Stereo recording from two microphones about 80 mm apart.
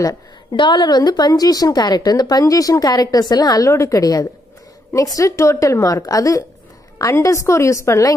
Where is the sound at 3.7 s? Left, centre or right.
Left.